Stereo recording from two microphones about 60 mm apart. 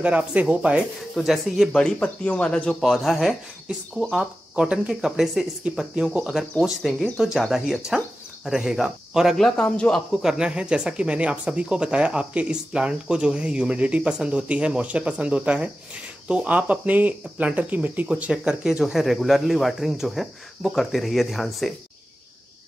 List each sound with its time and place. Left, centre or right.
0.0 s speech: right
1.1 s speech: centre
1.7 s speech: centre
2.8 s speech: centre
9.4 s speech: centre
10.1 s speech: centre